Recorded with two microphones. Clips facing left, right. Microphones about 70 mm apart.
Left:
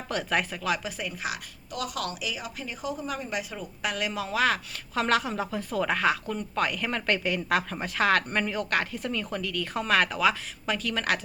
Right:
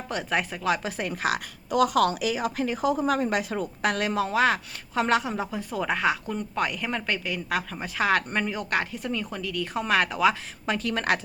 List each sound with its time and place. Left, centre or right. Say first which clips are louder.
0.1 s speech: even; centre
0.8 s speech: right 4 dB; right
1.1 s speech: right 7 dB; right
1.7 s a woman's voice: right 11 dB; right